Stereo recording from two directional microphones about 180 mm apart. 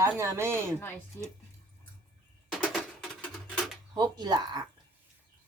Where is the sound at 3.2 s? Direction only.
Centre (ahead or behind).